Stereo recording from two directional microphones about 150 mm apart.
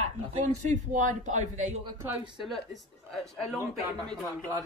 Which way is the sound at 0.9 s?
55° right (ahead or behind).